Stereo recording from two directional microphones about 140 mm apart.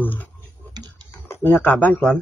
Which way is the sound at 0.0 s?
15° left (ahead or behind).